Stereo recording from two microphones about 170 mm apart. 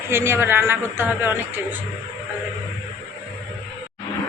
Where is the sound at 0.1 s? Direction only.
15° right (ahead or behind).